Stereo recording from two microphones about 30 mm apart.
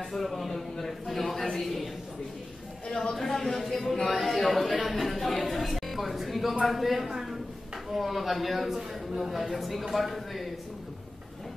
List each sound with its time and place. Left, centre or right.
0.1 s a man's voice: centre
2.9 s speech: left
3.2 s a man's voice: centre